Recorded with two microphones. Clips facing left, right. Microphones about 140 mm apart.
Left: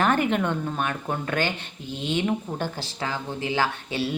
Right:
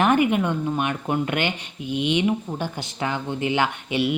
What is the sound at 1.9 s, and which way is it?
Speech, 65° right (ahead or behind).